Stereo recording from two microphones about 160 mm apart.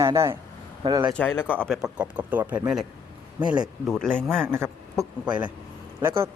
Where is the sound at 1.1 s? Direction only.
10° left (ahead or behind); by 2.8 s 5° right (ahead or behind).